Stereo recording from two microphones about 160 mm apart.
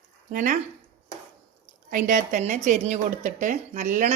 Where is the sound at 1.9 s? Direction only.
55° right (ahead or behind).